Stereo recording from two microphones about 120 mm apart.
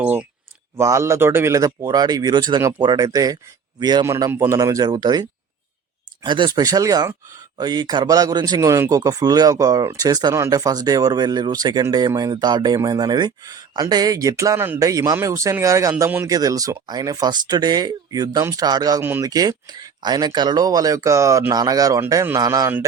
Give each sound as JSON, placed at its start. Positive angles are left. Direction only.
{"t": 0.0, "sound": "speech", "side_deg": -10}
{"t": 0.8, "sound": "speech", "side_deg": -25}
{"t": 4.0, "sound": "speech", "side_deg": -20}
{"t": 6.2, "sound": "speech", "side_deg": -40}
{"t": 16.2, "sound": "speech", "side_deg": -30}